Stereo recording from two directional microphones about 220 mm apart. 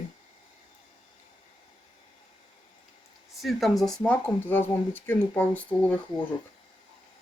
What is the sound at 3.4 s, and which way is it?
Speech, centre (ahead or behind).